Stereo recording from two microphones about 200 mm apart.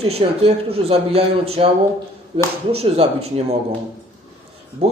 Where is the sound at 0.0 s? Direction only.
30° right (ahead or behind).